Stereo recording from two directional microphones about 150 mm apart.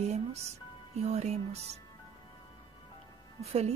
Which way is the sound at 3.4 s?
45° right (ahead or behind).